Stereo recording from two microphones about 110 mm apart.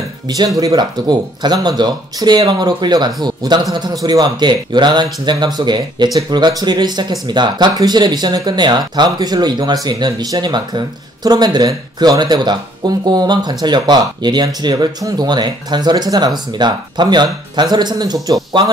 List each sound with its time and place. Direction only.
0.3 s speech: 35° right (ahead or behind)